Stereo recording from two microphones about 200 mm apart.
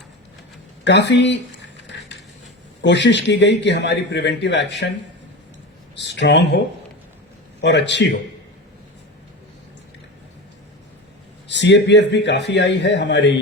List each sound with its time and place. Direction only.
0.9 s a sound: 60° left (ahead or behind)
2.8 s a man's voice: 60° left (ahead or behind)
6.0 s a man's voice: 60° left (ahead or behind)
7.6 s a man's voice: 60° left (ahead or behind)
11.4 s a man's voice: 60° left (ahead or behind)